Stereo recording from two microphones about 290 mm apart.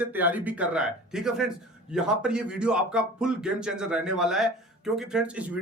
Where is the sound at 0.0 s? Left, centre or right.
Centre.